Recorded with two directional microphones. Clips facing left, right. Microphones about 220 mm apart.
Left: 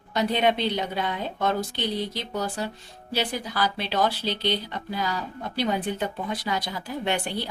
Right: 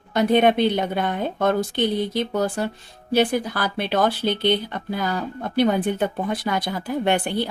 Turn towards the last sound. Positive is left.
turn(degrees=-55)  # may be behind; listen again after turning